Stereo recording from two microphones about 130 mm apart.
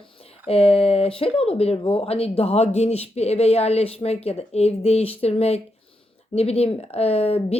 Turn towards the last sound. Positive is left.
turn(degrees=50)  # may be behind; listen again after turning